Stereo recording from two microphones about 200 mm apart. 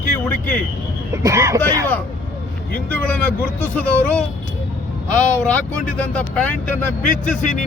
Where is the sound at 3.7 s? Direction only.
5° left (ahead or behind).